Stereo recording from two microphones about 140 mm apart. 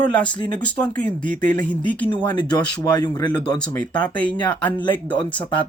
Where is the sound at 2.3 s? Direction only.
30° left (ahead or behind).